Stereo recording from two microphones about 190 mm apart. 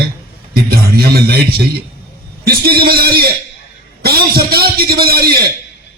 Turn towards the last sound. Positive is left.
turn(degrees=-55)  # may be behind; listen again after turning